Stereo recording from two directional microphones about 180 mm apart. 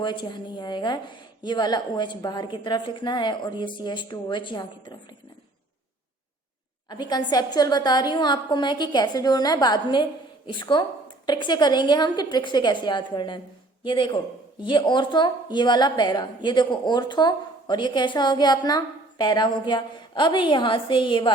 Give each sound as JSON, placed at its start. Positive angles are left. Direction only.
{"t": 0.0, "sound": "a woman's voice", "side_deg": 25}
{"t": 6.9, "sound": "a woman's voice", "side_deg": 25}